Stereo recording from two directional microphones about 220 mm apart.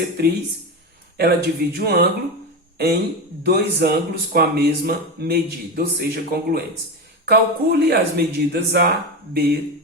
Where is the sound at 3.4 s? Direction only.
50° right (ahead or behind).